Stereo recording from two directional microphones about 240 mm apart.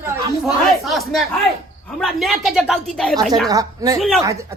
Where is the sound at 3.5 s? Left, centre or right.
Centre.